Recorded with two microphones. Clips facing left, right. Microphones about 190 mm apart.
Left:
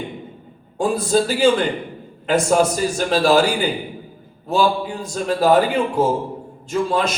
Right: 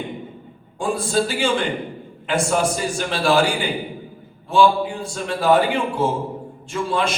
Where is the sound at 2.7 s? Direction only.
40° left (ahead or behind).